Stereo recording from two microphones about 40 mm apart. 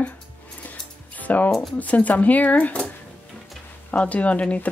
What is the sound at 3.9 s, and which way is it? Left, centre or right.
Speech, left.